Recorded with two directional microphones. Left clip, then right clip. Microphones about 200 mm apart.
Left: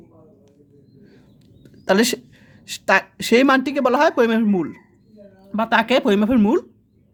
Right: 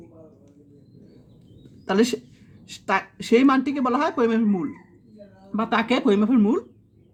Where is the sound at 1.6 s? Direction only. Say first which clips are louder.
Left 4 dB; 50° left (ahead or behind).